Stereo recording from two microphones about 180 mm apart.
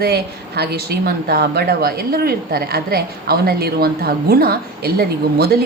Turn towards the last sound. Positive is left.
turn(degrees=-60)  # may be behind; listen again after turning